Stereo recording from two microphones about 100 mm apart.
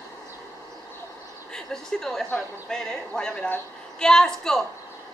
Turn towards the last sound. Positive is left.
turn(degrees=5)  # may be behind; listen again after turning